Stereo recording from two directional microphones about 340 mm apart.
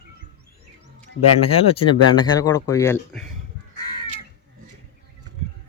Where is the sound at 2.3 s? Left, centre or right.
Centre.